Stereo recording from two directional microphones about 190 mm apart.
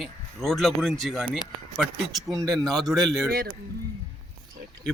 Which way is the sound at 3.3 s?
55° right (ahead or behind).